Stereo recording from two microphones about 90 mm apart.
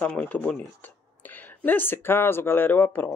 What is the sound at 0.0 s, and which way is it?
Speech, 20° left (ahead or behind).